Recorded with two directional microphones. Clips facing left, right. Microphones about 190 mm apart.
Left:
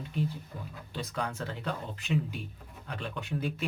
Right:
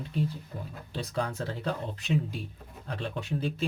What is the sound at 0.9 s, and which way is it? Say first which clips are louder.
Speech: right 3 dB; 35° right (ahead or behind).